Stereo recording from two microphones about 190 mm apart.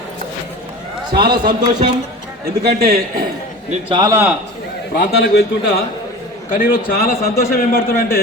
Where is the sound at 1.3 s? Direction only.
25° right (ahead or behind).